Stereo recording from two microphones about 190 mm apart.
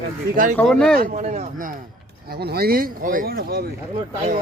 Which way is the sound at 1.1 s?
35° right (ahead or behind).